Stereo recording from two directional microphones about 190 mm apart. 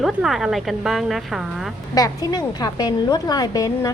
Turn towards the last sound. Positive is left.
turn(degrees=20)  # may be behind; listen again after turning